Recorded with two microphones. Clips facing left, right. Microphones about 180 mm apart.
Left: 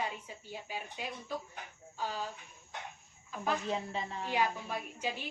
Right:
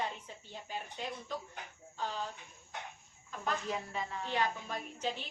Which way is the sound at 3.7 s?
25° left (ahead or behind).